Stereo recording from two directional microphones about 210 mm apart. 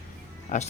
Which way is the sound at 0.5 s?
35° left (ahead or behind).